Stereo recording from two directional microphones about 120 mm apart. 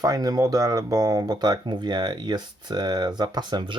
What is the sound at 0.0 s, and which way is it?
Speech, 30° right (ahead or behind).